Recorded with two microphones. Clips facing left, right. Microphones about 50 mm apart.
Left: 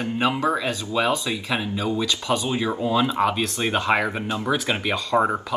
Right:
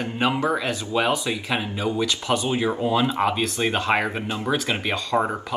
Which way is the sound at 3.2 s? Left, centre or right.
Centre.